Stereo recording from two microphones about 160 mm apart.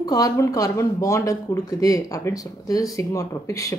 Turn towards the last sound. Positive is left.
turn(degrees=20)  # may be behind; listen again after turning